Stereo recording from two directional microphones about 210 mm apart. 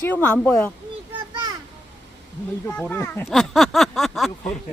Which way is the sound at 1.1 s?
20° right (ahead or behind).